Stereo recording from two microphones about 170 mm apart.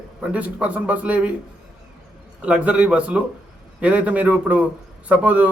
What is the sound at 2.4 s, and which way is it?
A man's voice, 5° right (ahead or behind).